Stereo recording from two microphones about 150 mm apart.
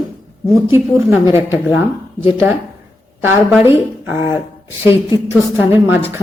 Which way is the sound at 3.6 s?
15° right (ahead or behind).